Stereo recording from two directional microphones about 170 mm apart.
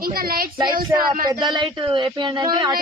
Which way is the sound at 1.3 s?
25° right (ahead or behind).